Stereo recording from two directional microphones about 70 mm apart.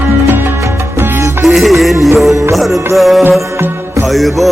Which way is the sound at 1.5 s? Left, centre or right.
Centre.